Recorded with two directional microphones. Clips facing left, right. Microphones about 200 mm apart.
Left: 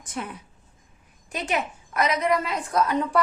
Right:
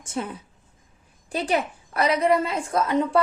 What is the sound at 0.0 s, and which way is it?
A woman's voice, 25° right (ahead or behind).